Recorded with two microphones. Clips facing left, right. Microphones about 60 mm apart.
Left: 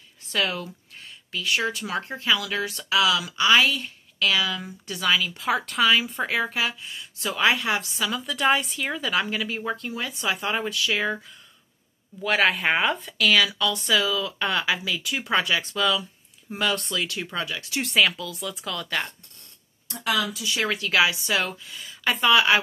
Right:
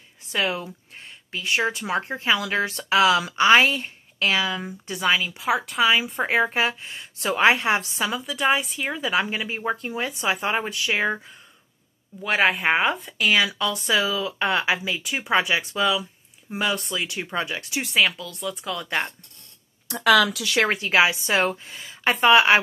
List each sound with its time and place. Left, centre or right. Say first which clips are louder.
0.3 s speech: right 1 dB; right
5.3 s speech: right 1 dB; centre
5.9 s a woman's voice: right 1 dB; right
8.3 s speech: left 1 dB; centre; by 11.3 s right
12.2 s speech: right 1 dB; centre
13.2 s speech: even; right
17.8 s speech: even; centre
18.8 s speech: right 2 dB; right
19.9 s speech: right 8 dB; right
20.6 s a woman's voice: right 2 dB; right